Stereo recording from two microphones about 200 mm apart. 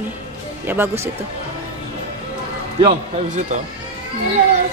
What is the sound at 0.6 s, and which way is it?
Speech, 10° right (ahead or behind).